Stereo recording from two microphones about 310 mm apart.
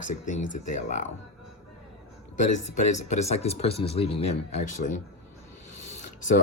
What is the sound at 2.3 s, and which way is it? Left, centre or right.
Speech, left.